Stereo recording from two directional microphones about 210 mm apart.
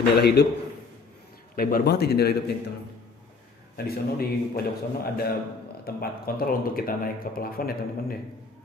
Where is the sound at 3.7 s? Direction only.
45° left (ahead or behind).